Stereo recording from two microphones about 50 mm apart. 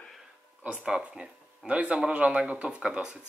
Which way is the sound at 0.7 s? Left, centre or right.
Centre.